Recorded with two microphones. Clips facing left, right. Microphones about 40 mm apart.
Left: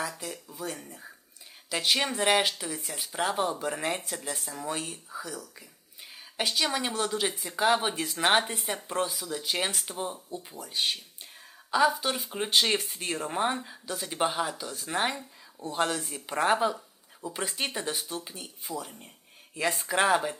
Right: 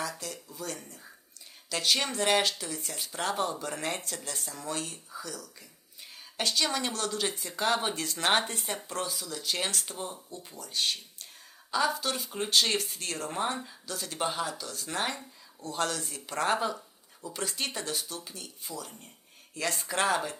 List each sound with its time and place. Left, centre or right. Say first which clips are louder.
0.4 s speech: left 2 dB; centre